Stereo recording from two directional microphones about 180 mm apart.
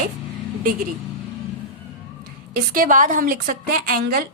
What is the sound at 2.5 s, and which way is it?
A woman's voice, 50° right (ahead or behind).